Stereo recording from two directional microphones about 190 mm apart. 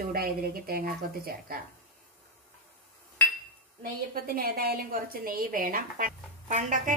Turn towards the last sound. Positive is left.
turn(degrees=-40)  # may be behind; listen again after turning